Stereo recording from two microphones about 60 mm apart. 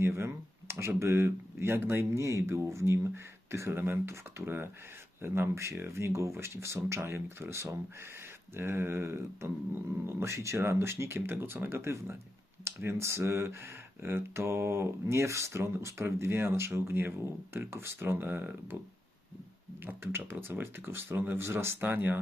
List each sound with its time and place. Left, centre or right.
0.0 s speech: right
19.8 s speech: right